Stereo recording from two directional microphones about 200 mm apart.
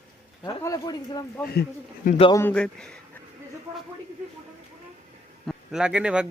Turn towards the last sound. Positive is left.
turn(degrees=-5)  # may be behind; listen again after turning